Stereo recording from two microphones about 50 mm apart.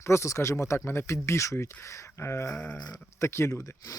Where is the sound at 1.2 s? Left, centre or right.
Left.